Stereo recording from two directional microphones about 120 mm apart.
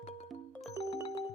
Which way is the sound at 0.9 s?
40° left (ahead or behind).